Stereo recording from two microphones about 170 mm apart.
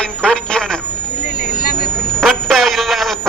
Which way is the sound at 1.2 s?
45° left (ahead or behind).